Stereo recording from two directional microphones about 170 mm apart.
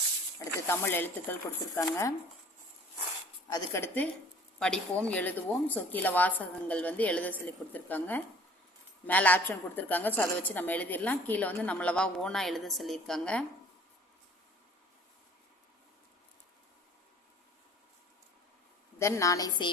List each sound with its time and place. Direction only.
0.3 s a woman's voice: 15° left (ahead or behind)
3.5 s a woman's voice: 15° left (ahead or behind)
18.9 s a woman's voice: 15° left (ahead or behind)